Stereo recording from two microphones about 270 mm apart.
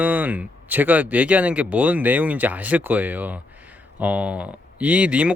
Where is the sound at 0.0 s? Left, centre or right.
Centre.